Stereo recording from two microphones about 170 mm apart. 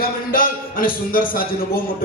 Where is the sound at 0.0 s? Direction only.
55° left (ahead or behind).